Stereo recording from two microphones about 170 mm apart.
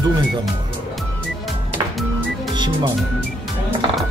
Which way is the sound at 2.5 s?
25° right (ahead or behind).